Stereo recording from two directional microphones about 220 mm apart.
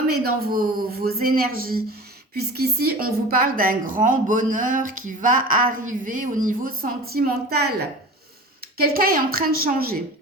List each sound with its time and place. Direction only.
0.4 s speech: 45° right (ahead or behind)
9.0 s speech: 40° right (ahead or behind)